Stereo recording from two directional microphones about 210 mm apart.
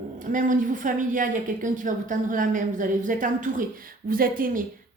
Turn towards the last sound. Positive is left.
turn(degrees=-40)  # may be behind; listen again after turning